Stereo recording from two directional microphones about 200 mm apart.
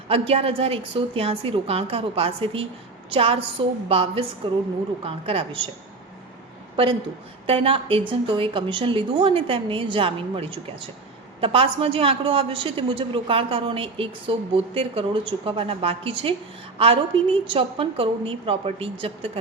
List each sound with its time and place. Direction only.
0.1 s a woman's voice: 30° right (ahead or behind)
7.4 s a woman's voice: 25° right (ahead or behind)